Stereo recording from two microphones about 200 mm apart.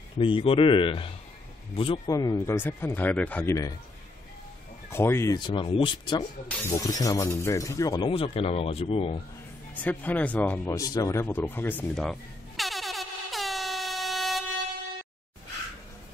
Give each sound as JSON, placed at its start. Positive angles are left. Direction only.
{"t": 0.2, "sound": "speech", "side_deg": 25}
{"t": 4.8, "sound": "speech", "side_deg": 10}
{"t": 9.8, "sound": "a sound", "side_deg": 10}